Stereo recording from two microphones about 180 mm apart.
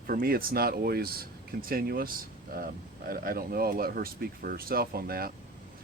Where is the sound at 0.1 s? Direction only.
55° right (ahead or behind).